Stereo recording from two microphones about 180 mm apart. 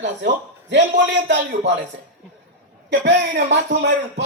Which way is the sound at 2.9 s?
80° right.